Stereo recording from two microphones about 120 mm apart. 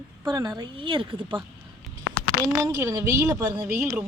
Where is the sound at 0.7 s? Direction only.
45° right (ahead or behind).